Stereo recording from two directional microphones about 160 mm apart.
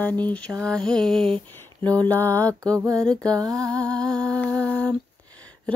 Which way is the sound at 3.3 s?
20° right (ahead or behind).